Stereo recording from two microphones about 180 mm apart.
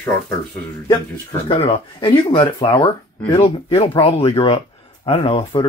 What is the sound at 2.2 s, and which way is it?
Speech, 20° left (ahead or behind).